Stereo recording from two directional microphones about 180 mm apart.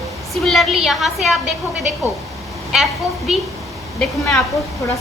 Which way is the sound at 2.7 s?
Centre (ahead or behind).